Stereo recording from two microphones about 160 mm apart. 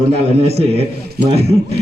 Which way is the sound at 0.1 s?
40° right (ahead or behind).